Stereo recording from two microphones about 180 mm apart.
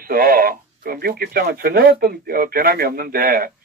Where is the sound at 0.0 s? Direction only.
55° right (ahead or behind).